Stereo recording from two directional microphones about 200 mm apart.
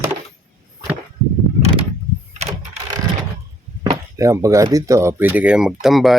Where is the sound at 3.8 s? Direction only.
15° right (ahead or behind).